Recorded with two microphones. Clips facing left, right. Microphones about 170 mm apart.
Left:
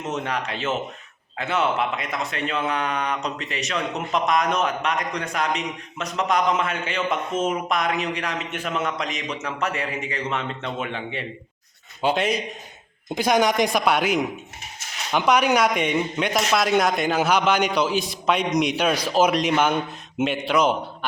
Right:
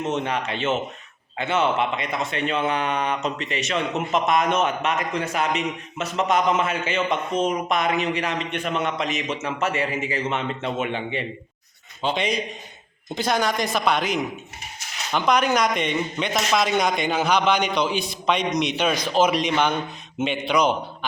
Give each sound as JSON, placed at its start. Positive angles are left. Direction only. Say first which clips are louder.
{"t": 0.0, "sound": "a man's voice", "louder": "right 2 dB", "side_deg": 0}